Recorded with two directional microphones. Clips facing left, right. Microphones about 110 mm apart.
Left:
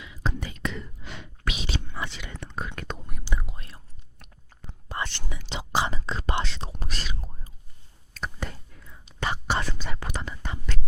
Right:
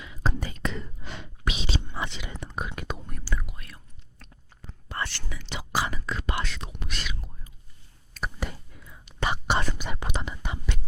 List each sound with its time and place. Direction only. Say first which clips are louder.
0.0 s whispering: right 1 dB; 40° right (ahead or behind); by 3.1 s 5° right (ahead or behind)
3.2 s whispering: left 2 dB; 25° left (ahead or behind)
4.2 s biting: right 2 dB; 15° left (ahead or behind)
4.9 s whispering: left 1 dB; 20° left (ahead or behind); by 7.5 s 35° left (ahead or behind)
8.1 s whispering: right 1 dB; 5° right (ahead or behind)
9.2 s whispering: right 1 dB; 15° right (ahead or behind)